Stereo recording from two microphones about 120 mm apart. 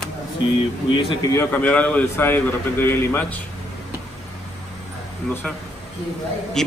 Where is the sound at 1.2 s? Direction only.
25° left (ahead or behind).